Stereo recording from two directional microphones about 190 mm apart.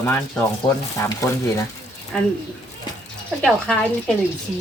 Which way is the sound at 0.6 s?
25° left (ahead or behind).